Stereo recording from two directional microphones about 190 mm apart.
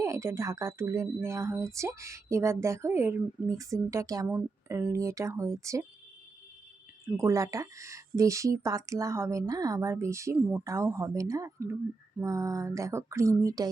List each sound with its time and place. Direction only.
0.0 s speech: 15° right (ahead or behind)
7.1 s speech: 15° right (ahead or behind)